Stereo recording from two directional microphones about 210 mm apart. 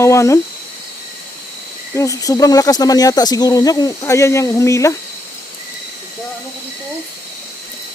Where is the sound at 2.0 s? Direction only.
15° left (ahead or behind).